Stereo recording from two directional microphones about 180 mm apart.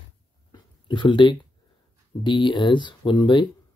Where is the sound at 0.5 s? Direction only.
25° left (ahead or behind).